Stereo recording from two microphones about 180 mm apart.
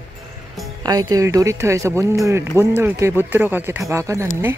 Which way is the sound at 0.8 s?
20° right (ahead or behind).